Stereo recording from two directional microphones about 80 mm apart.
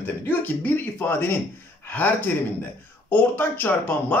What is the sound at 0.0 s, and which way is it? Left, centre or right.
Speech, left.